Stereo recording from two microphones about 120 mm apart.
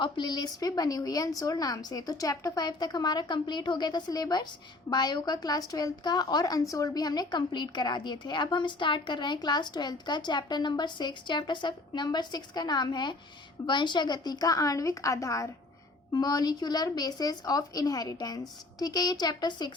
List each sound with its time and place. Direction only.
0.0 s a woman's voice: 40° left (ahead or behind)